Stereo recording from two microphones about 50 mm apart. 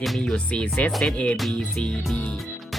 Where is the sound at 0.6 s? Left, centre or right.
Left.